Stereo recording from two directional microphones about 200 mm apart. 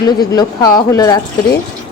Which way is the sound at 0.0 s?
20° left (ahead or behind).